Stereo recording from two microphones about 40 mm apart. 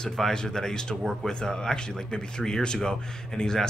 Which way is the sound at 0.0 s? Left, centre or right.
Centre.